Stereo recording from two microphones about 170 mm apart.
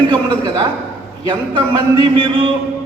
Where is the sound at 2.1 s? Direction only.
25° right (ahead or behind).